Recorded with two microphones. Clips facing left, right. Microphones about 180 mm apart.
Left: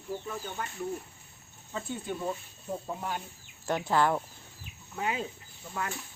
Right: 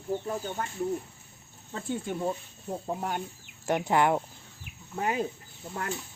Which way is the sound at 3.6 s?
20° right (ahead or behind).